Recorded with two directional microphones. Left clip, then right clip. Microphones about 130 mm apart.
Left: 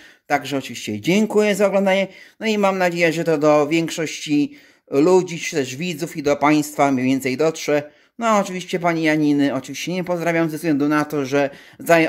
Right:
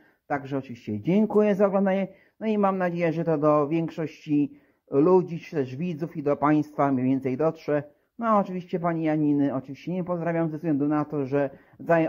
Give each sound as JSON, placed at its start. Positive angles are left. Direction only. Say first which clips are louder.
{"t": 0.3, "sound": "speech", "louder": "left 8 dB", "side_deg": 30}